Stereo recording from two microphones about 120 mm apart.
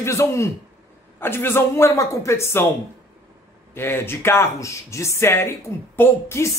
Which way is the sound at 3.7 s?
20° left (ahead or behind).